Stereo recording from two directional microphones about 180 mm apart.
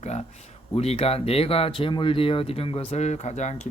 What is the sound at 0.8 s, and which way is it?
Speech, 35° left (ahead or behind).